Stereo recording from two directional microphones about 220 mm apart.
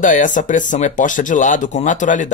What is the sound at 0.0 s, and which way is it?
Speech, 35° left (ahead or behind).